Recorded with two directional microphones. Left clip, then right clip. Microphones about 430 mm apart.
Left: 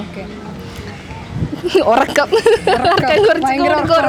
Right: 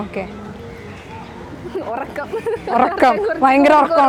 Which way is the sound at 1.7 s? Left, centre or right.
Left.